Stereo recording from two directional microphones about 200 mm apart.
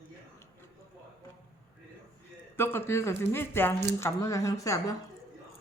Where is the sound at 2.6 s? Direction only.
10° left (ahead or behind).